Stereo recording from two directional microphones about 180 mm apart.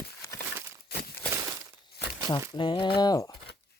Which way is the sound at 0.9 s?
60° left (ahead or behind).